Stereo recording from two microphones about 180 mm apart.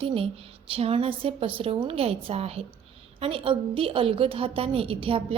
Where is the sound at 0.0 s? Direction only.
30° right (ahead or behind).